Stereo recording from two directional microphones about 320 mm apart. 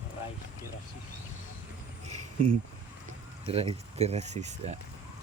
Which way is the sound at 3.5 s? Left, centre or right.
Centre.